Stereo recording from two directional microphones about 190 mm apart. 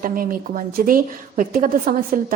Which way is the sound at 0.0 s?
50° right (ahead or behind).